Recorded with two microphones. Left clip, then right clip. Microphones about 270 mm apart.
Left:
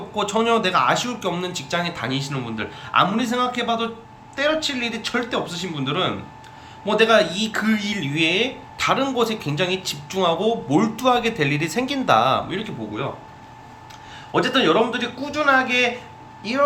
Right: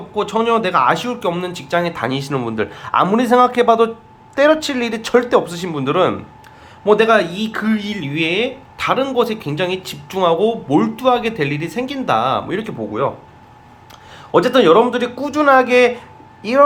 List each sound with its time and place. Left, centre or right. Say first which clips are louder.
0.2 s speech: right 3 dB; centre
14.3 s speech: right 7 dB; right